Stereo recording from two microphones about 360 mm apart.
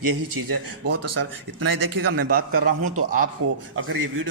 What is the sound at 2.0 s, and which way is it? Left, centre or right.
Speech, right.